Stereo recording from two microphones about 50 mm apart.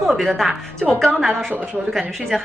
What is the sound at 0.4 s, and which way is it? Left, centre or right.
Speech, centre.